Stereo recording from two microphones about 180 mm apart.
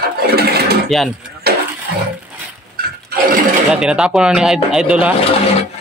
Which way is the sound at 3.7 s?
5° right (ahead or behind).